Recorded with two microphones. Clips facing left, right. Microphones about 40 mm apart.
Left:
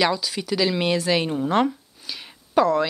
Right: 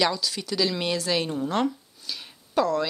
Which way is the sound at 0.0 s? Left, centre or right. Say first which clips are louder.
Left 3 dB; centre.